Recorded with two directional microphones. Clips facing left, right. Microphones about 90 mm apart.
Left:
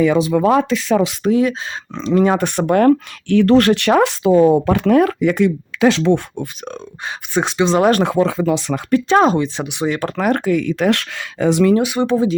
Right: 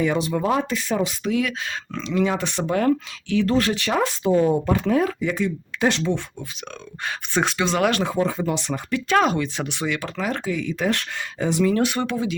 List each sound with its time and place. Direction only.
0.3 s speech: 90° left
1.2 s speech: 35° left (ahead or behind); by 6.1 s 75° left (ahead or behind)
7.3 s speech: 20° left (ahead or behind)
8.0 s speech: 85° left
9.0 s speech: 30° left (ahead or behind)
9.8 s speech: 40° left (ahead or behind)
10.2 s speech: 55° left (ahead or behind); by 11.7 s 90° left
11.8 s speech: 5° left (ahead or behind)
12.0 s speech: 30° left (ahead or behind)